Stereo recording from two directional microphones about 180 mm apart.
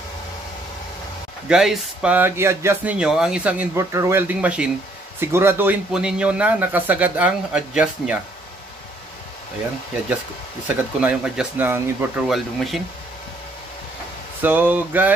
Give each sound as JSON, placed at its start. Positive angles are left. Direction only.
{"t": 1.5, "sound": "speech", "side_deg": -5}
{"t": 11.0, "sound": "speech", "side_deg": -5}
{"t": 12.3, "sound": "speech", "side_deg": 0}
{"t": 14.4, "sound": "speech", "side_deg": -10}